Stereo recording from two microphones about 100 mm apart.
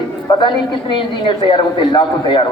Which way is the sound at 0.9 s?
50° left (ahead or behind).